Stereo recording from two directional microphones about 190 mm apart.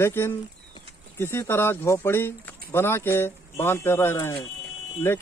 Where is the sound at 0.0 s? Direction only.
10° left (ahead or behind).